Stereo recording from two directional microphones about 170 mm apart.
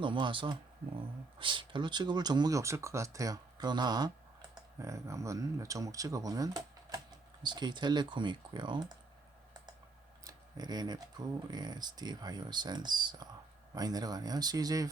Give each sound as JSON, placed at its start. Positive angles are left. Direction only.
{"t": 0.0, "sound": "speech", "side_deg": -30}
{"t": 10.2, "sound": "a sound", "side_deg": -25}
{"t": 11.5, "sound": "speech", "side_deg": -25}